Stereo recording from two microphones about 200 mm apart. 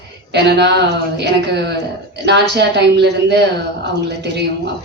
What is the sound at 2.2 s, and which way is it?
A woman's voice, 55° right (ahead or behind).